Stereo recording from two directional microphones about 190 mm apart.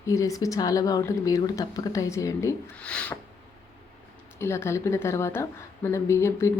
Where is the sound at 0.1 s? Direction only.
15° left (ahead or behind).